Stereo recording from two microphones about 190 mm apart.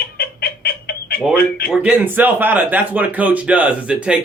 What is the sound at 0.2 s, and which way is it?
Chicken, 55° left (ahead or behind).